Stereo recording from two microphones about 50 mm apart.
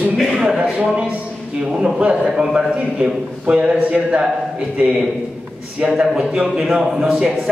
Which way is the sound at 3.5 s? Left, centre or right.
Right.